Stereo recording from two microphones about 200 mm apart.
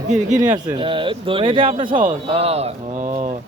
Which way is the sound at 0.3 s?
20° right (ahead or behind).